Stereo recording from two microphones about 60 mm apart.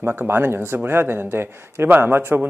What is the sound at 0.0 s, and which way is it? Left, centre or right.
A man's voice, right.